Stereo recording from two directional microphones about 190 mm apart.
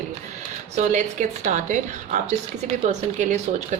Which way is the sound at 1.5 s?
40° right (ahead or behind).